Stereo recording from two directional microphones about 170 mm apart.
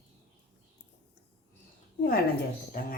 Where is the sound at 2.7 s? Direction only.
55° left (ahead or behind).